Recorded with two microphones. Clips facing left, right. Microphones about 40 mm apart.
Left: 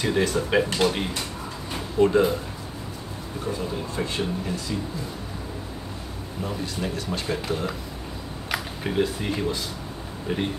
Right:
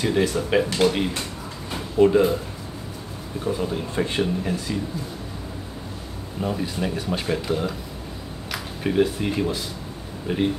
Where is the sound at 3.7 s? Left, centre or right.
Right.